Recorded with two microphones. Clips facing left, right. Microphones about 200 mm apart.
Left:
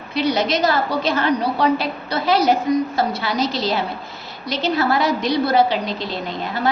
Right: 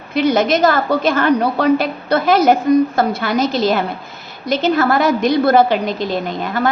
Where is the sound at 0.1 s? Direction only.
50° right (ahead or behind).